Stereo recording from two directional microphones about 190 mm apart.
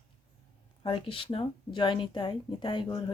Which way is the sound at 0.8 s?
25° left (ahead or behind).